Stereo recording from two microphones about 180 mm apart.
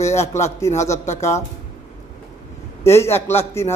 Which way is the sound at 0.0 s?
40° left (ahead or behind).